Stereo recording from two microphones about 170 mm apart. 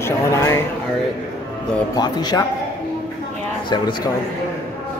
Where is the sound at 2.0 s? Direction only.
25° left (ahead or behind).